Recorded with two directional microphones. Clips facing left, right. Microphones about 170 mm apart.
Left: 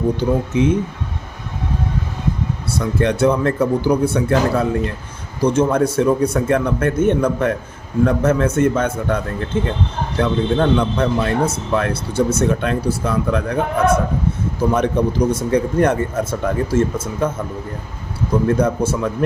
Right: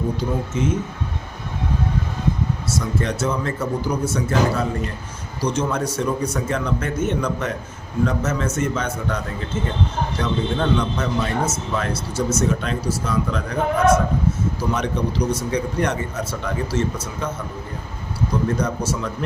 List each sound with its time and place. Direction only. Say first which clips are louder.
0.2 s a man's voice: left 6 dB; 65° left (ahead or behind)
2.6 s a man's voice: left 7 dB; 60° left (ahead or behind)
18.4 s a man's voice: left 6 dB; 55° left (ahead or behind)